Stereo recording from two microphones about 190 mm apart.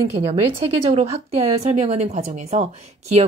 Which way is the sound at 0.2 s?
30° right (ahead or behind).